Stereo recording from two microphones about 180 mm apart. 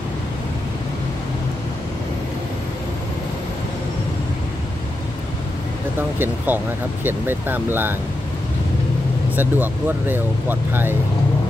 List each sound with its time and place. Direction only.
6.1 s speech: 10° right (ahead or behind)
9.3 s speech: 10° right (ahead or behind)